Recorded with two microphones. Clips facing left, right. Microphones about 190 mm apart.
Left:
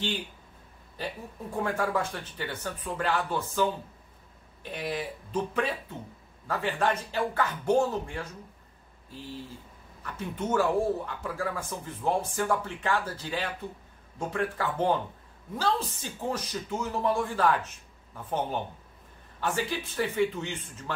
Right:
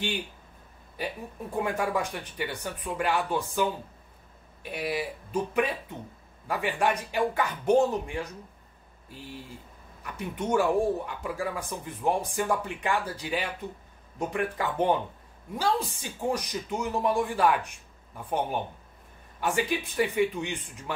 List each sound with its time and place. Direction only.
0.9 s speech: 15° right (ahead or behind)
4.6 s speech: 10° right (ahead or behind)